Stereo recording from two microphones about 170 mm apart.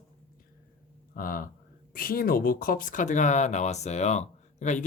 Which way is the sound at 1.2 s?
55° left (ahead or behind).